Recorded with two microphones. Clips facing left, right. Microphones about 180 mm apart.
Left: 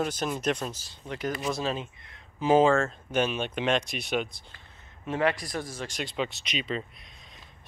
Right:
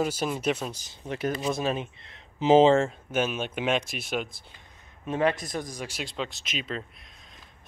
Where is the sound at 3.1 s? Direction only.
5° right (ahead or behind).